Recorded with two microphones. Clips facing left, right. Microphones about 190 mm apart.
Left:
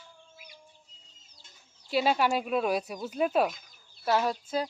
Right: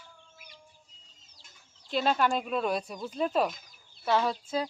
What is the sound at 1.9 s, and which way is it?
Speech, 10° left (ahead or behind).